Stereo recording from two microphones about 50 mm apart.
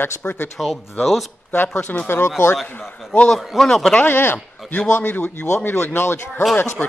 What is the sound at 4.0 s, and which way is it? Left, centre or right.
Speech, left.